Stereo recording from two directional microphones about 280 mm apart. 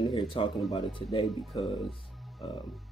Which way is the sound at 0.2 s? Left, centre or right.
Centre.